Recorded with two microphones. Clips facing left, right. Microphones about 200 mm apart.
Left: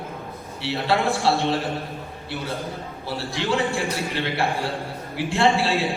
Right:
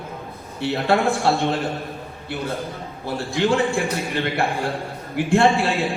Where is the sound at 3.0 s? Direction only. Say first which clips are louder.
Right 6 dB; 50° right (ahead or behind).